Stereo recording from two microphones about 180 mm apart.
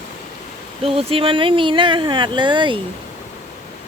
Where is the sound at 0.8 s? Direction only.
35° right (ahead or behind).